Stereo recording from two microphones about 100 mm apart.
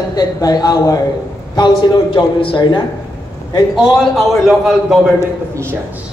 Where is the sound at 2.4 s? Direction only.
55° left (ahead or behind).